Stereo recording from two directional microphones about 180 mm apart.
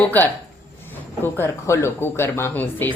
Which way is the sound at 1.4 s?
15° left (ahead or behind).